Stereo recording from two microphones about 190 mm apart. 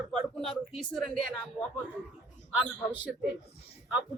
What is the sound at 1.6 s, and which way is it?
Speech, 25° left (ahead or behind).